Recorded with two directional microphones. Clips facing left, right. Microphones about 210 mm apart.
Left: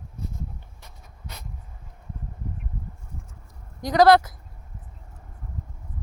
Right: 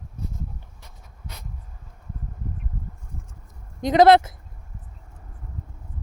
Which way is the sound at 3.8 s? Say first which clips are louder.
Right 2 dB; 25° right (ahead or behind).